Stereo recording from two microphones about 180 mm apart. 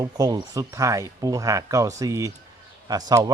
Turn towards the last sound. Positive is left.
turn(degrees=-20)  # may be behind; listen again after turning